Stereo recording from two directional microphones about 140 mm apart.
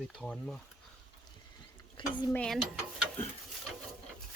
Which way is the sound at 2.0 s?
35° left (ahead or behind).